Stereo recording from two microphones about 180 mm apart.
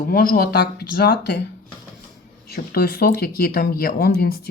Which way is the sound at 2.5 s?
60° left (ahead or behind).